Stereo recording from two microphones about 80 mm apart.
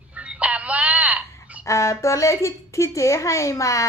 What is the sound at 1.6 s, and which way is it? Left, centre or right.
A woman's voice, left.